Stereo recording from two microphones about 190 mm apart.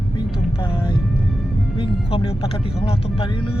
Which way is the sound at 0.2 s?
25° left (ahead or behind).